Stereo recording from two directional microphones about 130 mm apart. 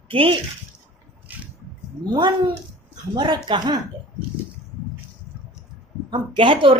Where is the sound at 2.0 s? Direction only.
35° right (ahead or behind).